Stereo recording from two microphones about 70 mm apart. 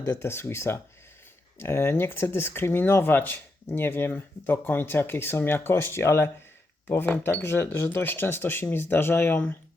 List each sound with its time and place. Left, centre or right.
0.0 s speech: left
7.0 s speech: left